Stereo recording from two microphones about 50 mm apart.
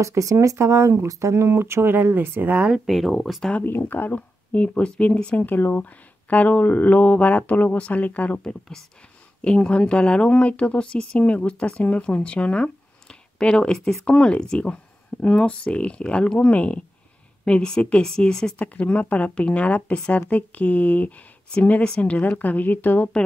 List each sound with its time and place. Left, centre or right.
0.0 s speech: right
2.9 s speech: centre
3.6 s speech: left
5.4 s speech: left; by 18.5 s centre
18.6 s speech: left